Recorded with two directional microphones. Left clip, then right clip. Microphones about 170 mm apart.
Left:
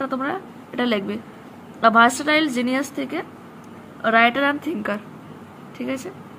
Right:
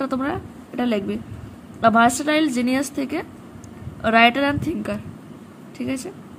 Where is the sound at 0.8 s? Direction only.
20° right (ahead or behind).